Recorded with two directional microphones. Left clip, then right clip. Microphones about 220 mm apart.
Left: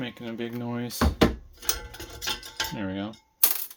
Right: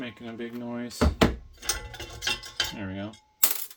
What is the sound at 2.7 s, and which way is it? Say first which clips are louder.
Cutlery: left 4 dB; 45° left (ahead or behind).